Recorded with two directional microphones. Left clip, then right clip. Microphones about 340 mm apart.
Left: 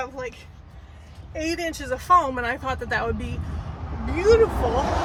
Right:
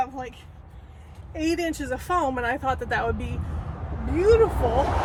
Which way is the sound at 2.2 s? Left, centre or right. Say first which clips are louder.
Right 1 dB; centre.